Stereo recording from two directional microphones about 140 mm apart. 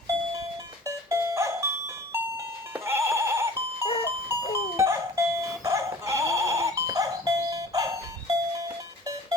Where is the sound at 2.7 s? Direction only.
20° right (ahead or behind).